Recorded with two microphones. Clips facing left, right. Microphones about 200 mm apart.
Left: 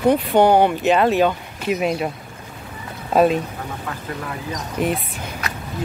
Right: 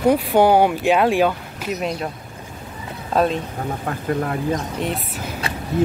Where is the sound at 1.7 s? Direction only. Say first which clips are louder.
Left 4 dB; 5° left (ahead or behind).